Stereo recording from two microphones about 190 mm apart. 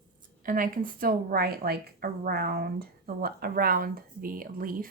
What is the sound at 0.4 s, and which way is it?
A woman's voice, 45° right (ahead or behind).